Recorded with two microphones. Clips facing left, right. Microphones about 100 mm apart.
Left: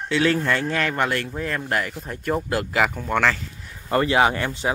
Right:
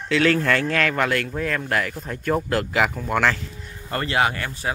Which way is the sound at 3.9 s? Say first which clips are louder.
Left 4 dB; 20° left (ahead or behind).